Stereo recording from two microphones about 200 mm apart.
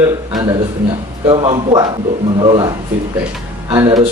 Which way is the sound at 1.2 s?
25° right (ahead or behind).